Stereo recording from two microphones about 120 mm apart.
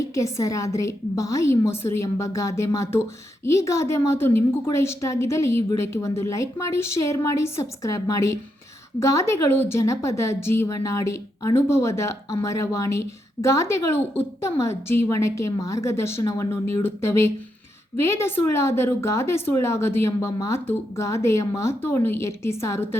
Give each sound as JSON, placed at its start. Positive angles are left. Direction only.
{"t": 0.1, "sound": "speech", "side_deg": 25}